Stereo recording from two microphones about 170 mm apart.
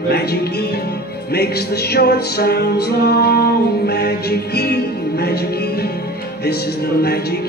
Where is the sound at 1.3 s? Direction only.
70° left (ahead or behind).